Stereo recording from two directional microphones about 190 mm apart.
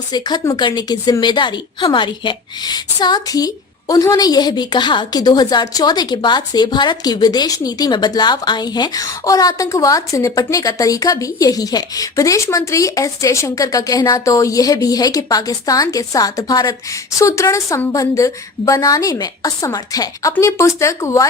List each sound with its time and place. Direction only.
0.1 s a woman's voice: 20° left (ahead or behind)